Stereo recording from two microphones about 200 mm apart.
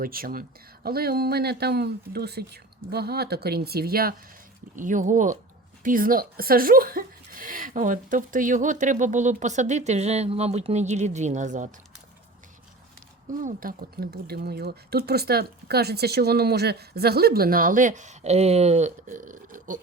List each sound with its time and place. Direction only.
0.0 s speech: 45° right (ahead or behind)
13.4 s speech: 45° right (ahead or behind)